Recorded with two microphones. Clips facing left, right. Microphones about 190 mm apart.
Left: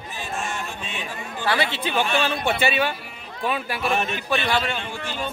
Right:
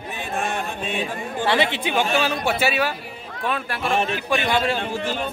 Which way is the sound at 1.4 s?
20° right (ahead or behind).